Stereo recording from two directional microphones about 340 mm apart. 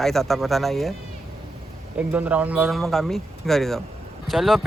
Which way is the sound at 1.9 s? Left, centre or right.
Centre.